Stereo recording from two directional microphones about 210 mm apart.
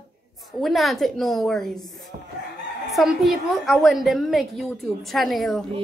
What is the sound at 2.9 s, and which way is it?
A woman's voice, centre (ahead or behind).